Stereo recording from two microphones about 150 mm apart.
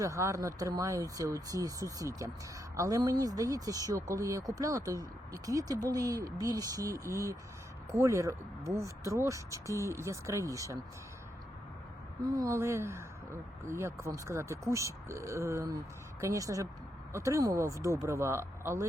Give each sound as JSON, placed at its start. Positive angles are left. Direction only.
{"t": 0.0, "sound": "speech", "side_deg": -20}
{"t": 12.4, "sound": "speech", "side_deg": -20}